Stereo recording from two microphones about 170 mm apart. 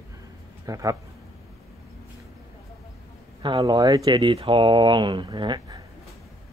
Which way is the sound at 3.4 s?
25° right (ahead or behind).